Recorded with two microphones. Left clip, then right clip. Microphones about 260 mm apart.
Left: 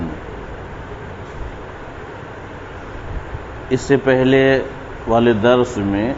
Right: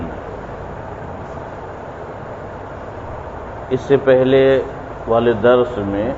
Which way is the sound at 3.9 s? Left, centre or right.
Left.